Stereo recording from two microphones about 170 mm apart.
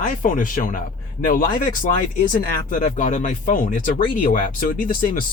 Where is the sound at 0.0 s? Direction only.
50° left (ahead or behind).